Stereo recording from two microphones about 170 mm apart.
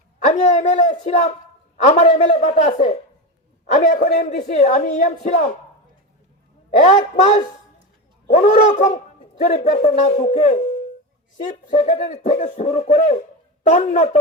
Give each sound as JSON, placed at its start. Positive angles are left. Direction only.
{"t": 0.3, "sound": "a woman's voice", "side_deg": 40}
{"t": 6.8, "sound": "a woman's voice", "side_deg": 40}
{"t": 11.7, "sound": "a woman's voice", "side_deg": 40}